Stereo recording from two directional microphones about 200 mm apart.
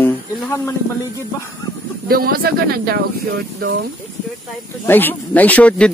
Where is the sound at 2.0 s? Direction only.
50° right (ahead or behind).